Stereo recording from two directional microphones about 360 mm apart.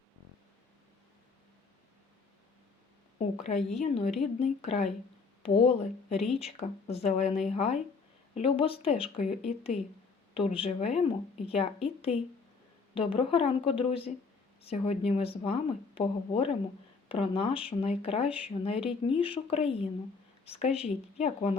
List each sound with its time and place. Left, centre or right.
3.2 s a woman's voice: centre